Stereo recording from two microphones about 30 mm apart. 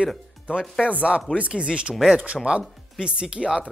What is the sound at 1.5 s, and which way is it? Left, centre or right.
Speech, right.